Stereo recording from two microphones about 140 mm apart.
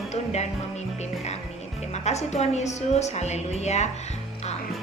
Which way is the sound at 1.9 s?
55° left (ahead or behind).